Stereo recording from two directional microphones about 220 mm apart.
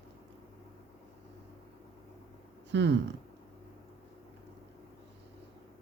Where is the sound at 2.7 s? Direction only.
55° right (ahead or behind).